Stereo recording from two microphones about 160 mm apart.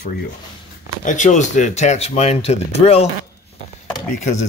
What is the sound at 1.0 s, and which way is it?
Speech, 50° left (ahead or behind).